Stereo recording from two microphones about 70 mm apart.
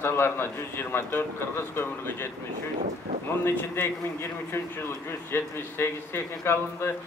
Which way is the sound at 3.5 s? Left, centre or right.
Left.